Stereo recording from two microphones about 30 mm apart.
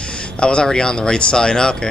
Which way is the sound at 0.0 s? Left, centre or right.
Left.